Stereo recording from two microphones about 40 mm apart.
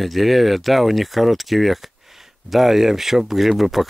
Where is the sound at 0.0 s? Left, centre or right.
Centre.